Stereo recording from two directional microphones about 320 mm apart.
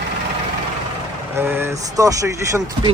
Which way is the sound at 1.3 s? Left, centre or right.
Centre.